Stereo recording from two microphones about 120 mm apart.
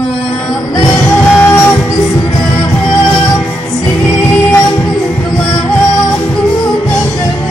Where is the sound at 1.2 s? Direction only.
15° left (ahead or behind).